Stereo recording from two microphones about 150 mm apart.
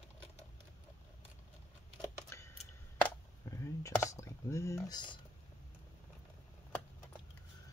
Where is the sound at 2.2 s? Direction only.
20° left (ahead or behind).